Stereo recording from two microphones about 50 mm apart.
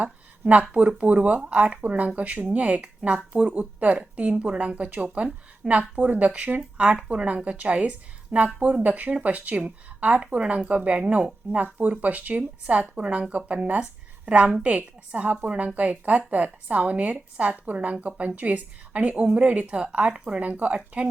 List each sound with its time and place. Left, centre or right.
0.0 s a sound: right
0.7 s speech: right
11.6 s speech: right